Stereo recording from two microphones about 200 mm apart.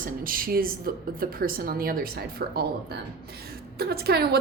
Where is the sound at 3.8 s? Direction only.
50° right (ahead or behind).